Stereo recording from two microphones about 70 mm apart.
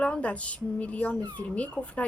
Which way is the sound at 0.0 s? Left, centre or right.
Centre.